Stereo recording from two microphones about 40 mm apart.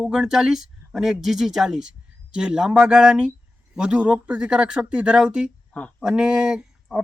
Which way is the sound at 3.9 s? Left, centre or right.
Right.